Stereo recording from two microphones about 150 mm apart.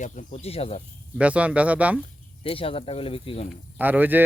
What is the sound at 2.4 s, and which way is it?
Speech, 40° left (ahead or behind).